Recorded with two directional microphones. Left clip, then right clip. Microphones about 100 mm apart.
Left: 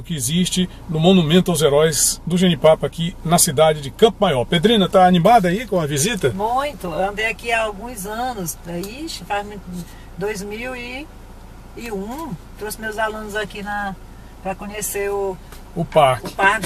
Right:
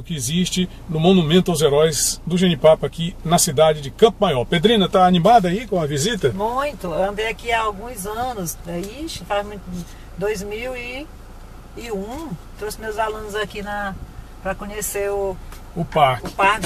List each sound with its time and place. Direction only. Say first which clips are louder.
0.1 s speech: left 1 dB; 5° left (ahead or behind)
5.8 s speech: right 1 dB; 25° left (ahead or behind)
6.3 s speech: left 1 dB; 5° right (ahead or behind)
12.6 s speech: even; 5° right (ahead or behind)
13.6 s speech: left 1 dB; 15° right (ahead or behind)
15.9 s speech: left 2 dB; 20° left (ahead or behind)
16.2 s speech: left 1 dB; 5° right (ahead or behind)